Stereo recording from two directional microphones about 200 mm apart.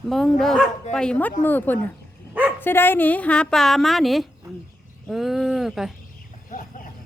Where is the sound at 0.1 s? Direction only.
Centre (ahead or behind).